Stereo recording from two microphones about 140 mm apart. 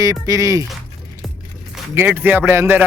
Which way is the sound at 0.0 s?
25° right (ahead or behind).